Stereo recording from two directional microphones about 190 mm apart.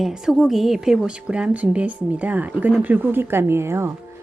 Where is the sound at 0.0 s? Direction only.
Centre (ahead or behind).